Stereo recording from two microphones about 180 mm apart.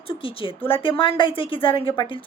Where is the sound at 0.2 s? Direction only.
30° left (ahead or behind).